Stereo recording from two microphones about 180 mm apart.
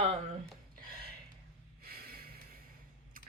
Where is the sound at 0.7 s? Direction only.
60° right (ahead or behind).